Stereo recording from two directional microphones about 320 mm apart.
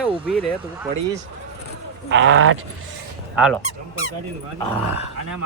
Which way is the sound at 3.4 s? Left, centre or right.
Centre.